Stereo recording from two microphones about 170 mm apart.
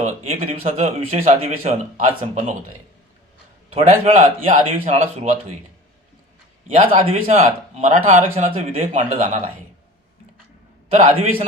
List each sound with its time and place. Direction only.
0.0 s a man's voice: 35° right (ahead or behind)
3.7 s a man's voice: 40° right (ahead or behind)
6.7 s a man's voice: 35° right (ahead or behind)
10.9 s a man's voice: 45° right (ahead or behind)